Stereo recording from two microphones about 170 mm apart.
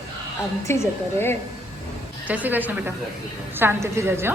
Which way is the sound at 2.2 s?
10° right (ahead or behind).